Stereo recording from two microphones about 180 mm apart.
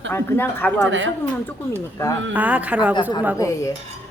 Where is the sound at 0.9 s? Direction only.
90° right.